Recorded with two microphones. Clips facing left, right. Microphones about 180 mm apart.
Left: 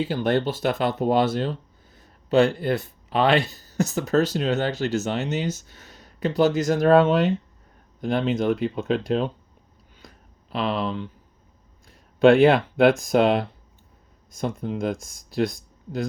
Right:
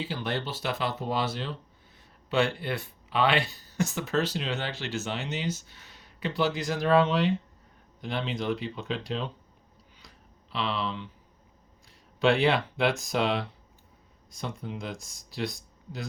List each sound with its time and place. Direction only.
0.0 s speech: 50° left (ahead or behind)
10.0 s a sound: 50° left (ahead or behind)
11.9 s speech: 50° left (ahead or behind)